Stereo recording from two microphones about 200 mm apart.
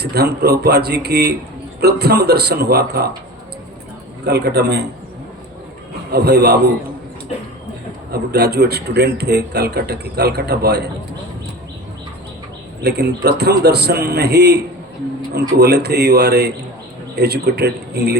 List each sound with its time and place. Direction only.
0.0 s a man's voice: 55° right (ahead or behind)
4.3 s speech: 55° right (ahead or behind)
6.1 s a man's voice: 55° right (ahead or behind)
8.1 s a man's voice: 55° right (ahead or behind)
12.8 s a man's voice: 55° right (ahead or behind)